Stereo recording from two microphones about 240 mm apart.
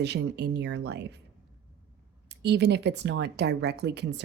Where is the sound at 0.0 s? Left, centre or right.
Right.